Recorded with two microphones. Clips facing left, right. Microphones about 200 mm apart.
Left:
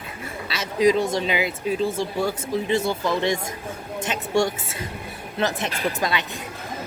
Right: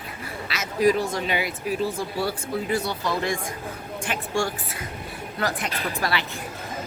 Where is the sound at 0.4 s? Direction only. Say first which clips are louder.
Left 2 dB; 25° left (ahead or behind).